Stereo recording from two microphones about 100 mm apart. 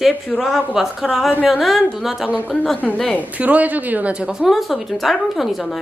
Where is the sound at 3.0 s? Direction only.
15° left (ahead or behind).